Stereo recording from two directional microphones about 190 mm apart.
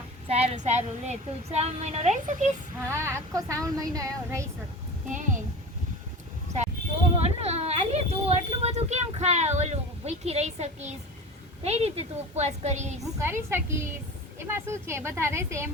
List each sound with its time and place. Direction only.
0.3 s a woman's voice: 35° right (ahead or behind)
2.8 s child singing: 15° right (ahead or behind)
5.0 s a woman's voice: 40° right (ahead or behind)
7.2 s a woman's voice: 35° right (ahead or behind)
13.0 s child singing: 15° right (ahead or behind)